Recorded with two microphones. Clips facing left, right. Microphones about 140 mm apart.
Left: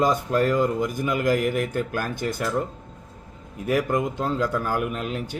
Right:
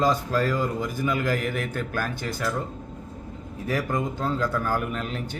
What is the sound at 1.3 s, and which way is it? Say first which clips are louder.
Speech: left 5 dB; 15° left (ahead or behind).